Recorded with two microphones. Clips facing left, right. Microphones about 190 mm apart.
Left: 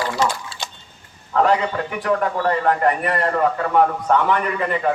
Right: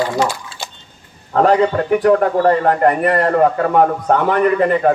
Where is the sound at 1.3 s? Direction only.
40° right (ahead or behind).